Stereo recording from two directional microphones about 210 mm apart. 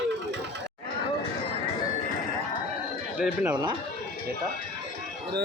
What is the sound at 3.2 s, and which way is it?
Speech, 5° right (ahead or behind).